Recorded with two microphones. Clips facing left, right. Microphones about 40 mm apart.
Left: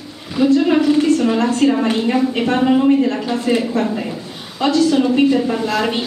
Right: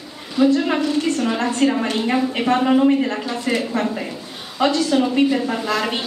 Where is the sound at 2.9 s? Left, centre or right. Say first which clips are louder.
Left 3 dB; centre.